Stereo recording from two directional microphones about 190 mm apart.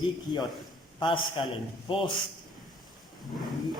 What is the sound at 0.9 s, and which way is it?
Speech, 25° left (ahead or behind).